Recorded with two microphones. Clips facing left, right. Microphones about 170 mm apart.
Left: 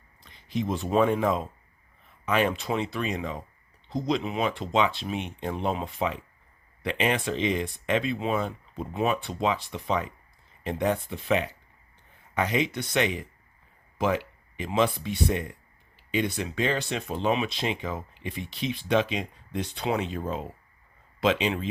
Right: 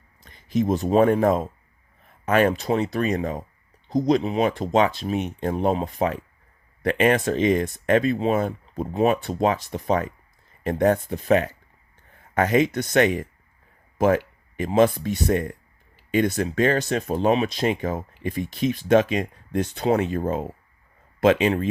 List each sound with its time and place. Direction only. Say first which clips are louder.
0.2 s speech: right 7 dB; 45° right (ahead or behind)